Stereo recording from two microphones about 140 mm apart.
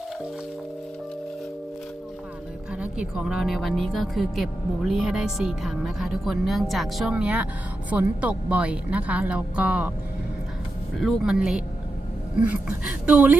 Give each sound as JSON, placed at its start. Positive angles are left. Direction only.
{"t": 2.7, "sound": "a woman's voice", "side_deg": -10}
{"t": 11.0, "sound": "a woman's voice", "side_deg": -5}